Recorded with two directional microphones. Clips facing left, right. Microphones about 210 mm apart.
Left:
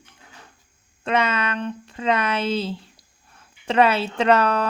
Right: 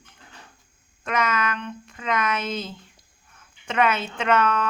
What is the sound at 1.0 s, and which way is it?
Speech, 30° left (ahead or behind).